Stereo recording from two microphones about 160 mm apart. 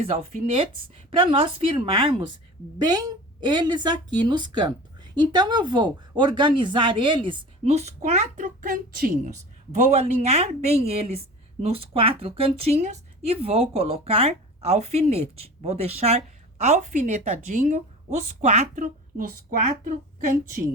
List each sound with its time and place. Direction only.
0.0 s a woman's voice: 40° right (ahead or behind); by 20.4 s 55° right (ahead or behind)